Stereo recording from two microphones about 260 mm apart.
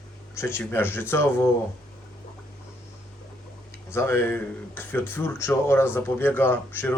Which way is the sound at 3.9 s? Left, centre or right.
Centre.